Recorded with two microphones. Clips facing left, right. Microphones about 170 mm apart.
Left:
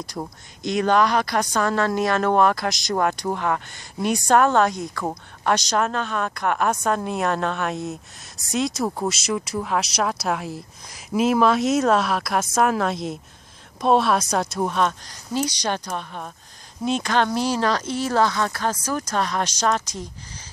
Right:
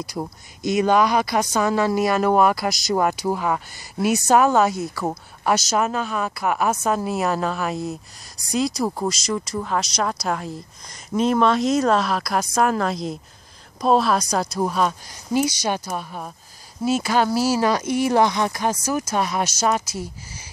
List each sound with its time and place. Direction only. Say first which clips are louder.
0.0 s speech: right 2 dB; 5° right (ahead or behind)